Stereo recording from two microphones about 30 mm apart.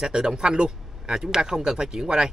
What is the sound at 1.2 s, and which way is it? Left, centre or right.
Speech, centre.